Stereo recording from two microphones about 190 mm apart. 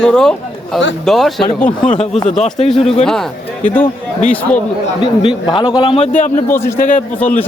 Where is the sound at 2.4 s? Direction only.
35° left (ahead or behind).